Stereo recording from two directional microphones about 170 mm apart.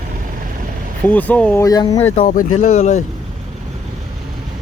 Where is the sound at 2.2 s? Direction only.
50° left (ahead or behind).